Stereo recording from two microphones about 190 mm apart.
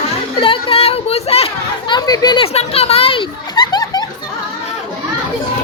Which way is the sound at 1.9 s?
20° left (ahead or behind).